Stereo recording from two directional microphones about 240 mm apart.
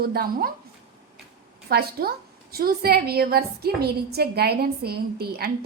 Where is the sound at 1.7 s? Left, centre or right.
Right.